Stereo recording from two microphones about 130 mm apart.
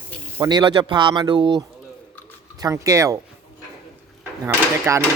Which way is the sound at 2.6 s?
25° right (ahead or behind).